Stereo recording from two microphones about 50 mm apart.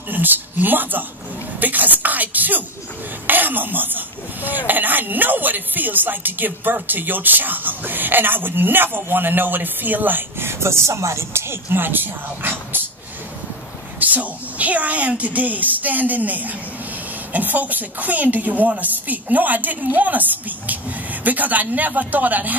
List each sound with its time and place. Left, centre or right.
0.1 s a woman's voice: right
10.5 s speech: right
13.9 s speech: right